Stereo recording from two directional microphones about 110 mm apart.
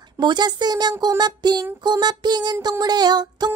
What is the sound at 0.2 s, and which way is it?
Music, 40° right (ahead or behind).